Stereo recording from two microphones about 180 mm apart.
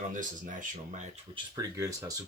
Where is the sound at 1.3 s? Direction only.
20° right (ahead or behind).